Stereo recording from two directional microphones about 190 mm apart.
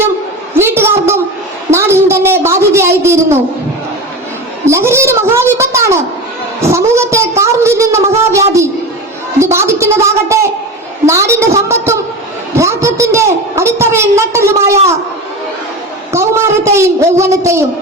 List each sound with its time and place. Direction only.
0.5 s a sound: 10° right (ahead or behind)
4.6 s a woman's voice: 15° right (ahead or behind)
16.1 s a woman's voice: 15° right (ahead or behind)